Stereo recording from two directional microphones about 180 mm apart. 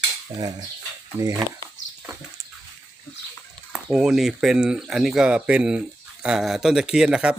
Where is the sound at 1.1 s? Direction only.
10° right (ahead or behind).